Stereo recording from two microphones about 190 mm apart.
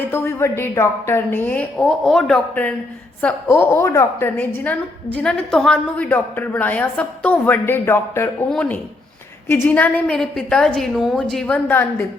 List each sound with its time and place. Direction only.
0.0 s a woman's voice: 10° left (ahead or behind)